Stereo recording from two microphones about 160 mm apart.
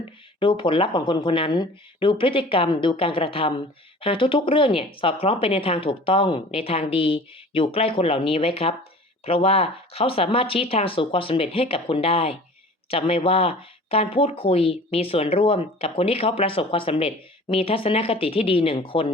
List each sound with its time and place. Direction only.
0.3 s speech: 30° left (ahead or behind)